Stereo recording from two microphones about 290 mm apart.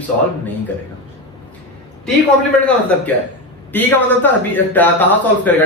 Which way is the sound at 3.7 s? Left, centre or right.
Centre.